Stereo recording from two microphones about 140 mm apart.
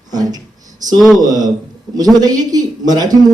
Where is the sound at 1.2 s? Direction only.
25° right (ahead or behind).